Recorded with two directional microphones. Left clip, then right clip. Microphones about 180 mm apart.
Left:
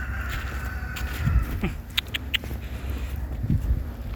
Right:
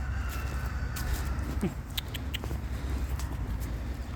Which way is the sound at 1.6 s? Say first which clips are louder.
Left 9 dB; 15° right (ahead or behind).